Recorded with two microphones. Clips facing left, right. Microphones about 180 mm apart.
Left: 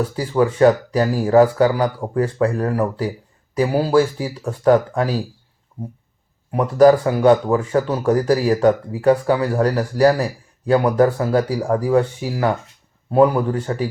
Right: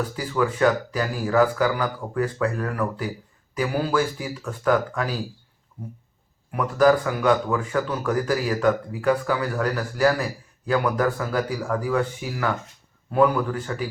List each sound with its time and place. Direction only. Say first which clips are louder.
0.2 s speech: left 7 dB; 30° left (ahead or behind)
6.5 s speech: left 6 dB; 30° left (ahead or behind)